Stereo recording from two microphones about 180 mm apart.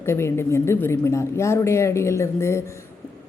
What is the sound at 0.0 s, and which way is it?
Speech, 15° left (ahead or behind).